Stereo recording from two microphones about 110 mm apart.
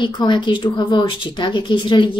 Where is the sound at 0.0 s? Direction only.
45° left (ahead or behind).